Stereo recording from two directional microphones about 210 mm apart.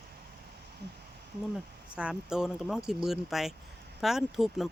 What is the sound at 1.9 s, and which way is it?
Speech, 5° right (ahead or behind).